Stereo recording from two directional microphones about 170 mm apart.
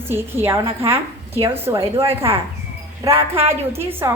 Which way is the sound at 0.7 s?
35° right (ahead or behind).